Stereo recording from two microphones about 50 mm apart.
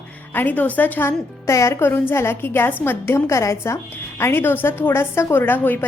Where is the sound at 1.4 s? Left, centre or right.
Left.